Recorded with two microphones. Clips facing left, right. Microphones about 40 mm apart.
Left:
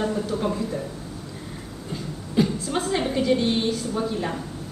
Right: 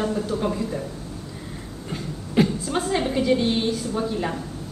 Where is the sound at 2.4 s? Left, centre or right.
Right.